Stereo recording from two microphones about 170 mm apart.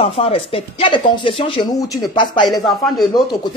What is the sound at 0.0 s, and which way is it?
Speech, 35° left (ahead or behind).